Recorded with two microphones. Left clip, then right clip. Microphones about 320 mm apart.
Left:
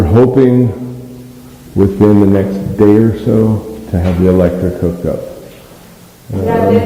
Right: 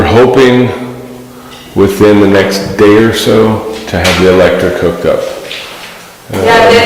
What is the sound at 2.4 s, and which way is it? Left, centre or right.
Speech, centre.